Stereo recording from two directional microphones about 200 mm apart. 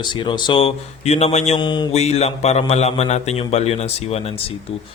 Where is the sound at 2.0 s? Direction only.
35° left (ahead or behind).